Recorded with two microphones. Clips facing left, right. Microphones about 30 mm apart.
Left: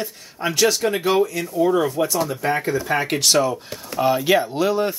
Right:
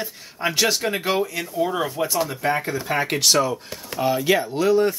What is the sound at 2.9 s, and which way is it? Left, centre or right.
Speech, centre.